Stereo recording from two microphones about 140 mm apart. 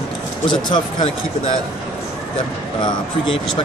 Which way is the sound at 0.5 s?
35° left (ahead or behind).